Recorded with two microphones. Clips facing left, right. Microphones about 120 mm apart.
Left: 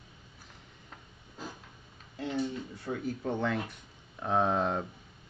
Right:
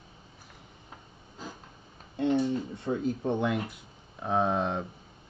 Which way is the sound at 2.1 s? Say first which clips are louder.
Right 7 dB; 30° right (ahead or behind).